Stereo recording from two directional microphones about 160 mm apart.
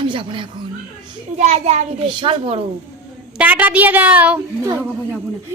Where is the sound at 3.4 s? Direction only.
10° right (ahead or behind).